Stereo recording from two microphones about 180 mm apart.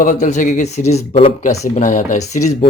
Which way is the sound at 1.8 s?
45° left (ahead or behind).